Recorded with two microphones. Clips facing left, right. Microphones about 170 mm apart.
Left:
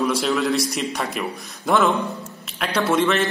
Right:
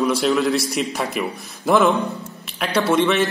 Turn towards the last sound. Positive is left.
turn(degrees=0)  # may be behind; listen again after turning